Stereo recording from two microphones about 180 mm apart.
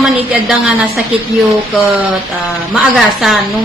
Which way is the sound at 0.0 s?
Centre (ahead or behind).